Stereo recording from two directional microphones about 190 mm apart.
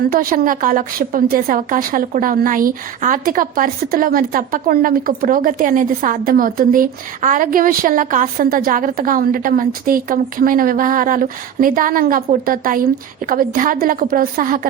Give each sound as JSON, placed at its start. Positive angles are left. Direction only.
{"t": 0.1, "sound": "a woman's voice", "side_deg": -50}